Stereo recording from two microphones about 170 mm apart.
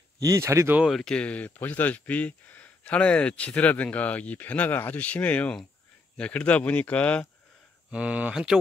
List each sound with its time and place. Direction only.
0.2 s speech: 20° right (ahead or behind)
0.8 s speech: centre (ahead or behind)
7.9 s speech: 5° right (ahead or behind)